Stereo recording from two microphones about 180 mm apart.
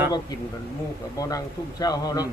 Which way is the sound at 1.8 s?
20° left (ahead or behind).